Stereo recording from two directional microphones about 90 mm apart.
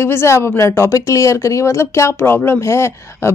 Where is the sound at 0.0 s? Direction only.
30° left (ahead or behind).